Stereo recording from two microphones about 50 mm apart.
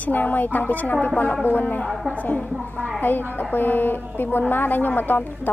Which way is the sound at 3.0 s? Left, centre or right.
Left.